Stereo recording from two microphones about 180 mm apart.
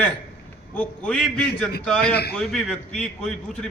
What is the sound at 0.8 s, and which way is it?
A man's voice, 5° left (ahead or behind).